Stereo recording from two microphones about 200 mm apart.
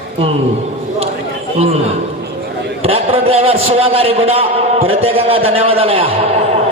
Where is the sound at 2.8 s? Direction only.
30° right (ahead or behind).